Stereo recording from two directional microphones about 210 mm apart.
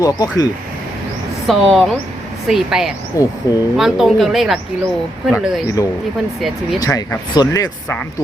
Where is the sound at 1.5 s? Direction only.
Centre (ahead or behind).